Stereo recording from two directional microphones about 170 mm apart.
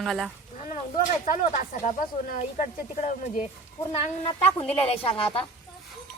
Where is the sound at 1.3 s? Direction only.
45° left (ahead or behind).